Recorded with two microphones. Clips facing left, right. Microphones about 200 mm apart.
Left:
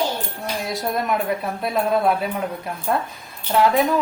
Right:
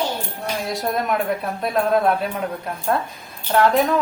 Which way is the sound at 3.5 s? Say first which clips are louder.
Right 1 dB; 5° left (ahead or behind).